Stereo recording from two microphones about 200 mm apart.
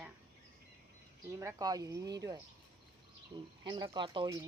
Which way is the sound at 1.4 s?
15° right (ahead or behind).